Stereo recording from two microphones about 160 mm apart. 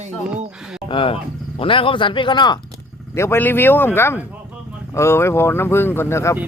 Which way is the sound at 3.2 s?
15° left (ahead or behind).